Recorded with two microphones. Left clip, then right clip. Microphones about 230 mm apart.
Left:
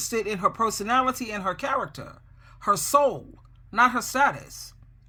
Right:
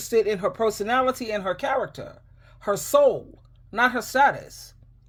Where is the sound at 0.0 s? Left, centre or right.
Left.